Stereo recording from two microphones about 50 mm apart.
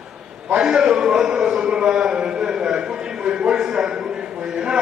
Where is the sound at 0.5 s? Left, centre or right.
Centre.